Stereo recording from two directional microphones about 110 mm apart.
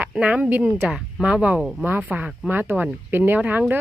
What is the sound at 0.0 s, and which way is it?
Speech, 10° right (ahead or behind).